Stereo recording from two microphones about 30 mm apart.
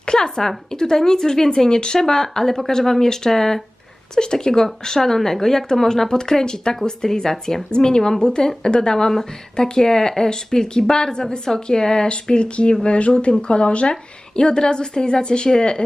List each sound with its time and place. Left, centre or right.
0.0 s a sound: left
0.4 s speech: centre
2.0 s a woman's voice: centre
6.1 s speech: left
12.0 s speech: left